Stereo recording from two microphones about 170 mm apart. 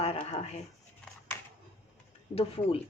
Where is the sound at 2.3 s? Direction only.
35° left (ahead or behind).